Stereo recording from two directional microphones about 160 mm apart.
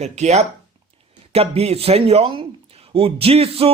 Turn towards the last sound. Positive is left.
turn(degrees=-40)  # may be behind; listen again after turning